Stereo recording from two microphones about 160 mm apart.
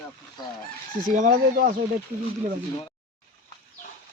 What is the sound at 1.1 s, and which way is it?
Speech, 55° right (ahead or behind).